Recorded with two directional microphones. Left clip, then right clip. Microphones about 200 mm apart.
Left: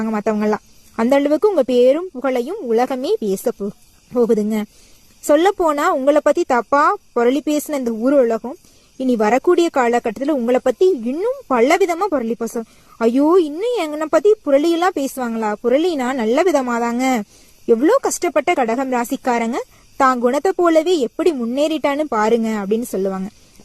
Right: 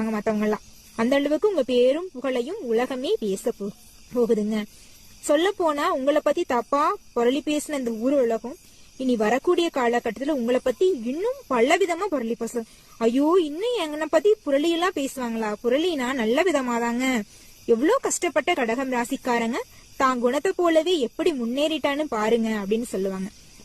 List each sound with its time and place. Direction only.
0.0 s speech: 35° left (ahead or behind)